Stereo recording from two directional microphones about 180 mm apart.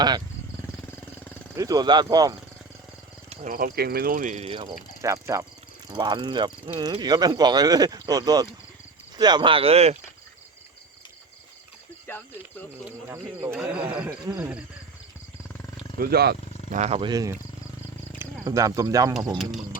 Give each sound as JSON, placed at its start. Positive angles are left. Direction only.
{"t": 0.9, "sound": "vehicle", "side_deg": 10}
{"t": 1.5, "sound": "speech", "side_deg": -20}
{"t": 3.2, "sound": "cricket", "side_deg": -45}
{"t": 4.4, "sound": "speech", "side_deg": -30}
{"t": 5.0, "sound": "speech", "side_deg": -15}
{"t": 12.0, "sound": "speech", "side_deg": 10}
{"t": 12.8, "sound": "speech", "side_deg": -10}
{"t": 16.0, "sound": "speech", "side_deg": -60}
{"t": 16.7, "sound": "speech", "side_deg": -35}
{"t": 17.1, "sound": "speech", "side_deg": -20}